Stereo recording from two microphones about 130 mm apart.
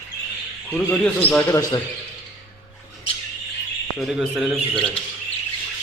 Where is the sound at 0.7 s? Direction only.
15° left (ahead or behind).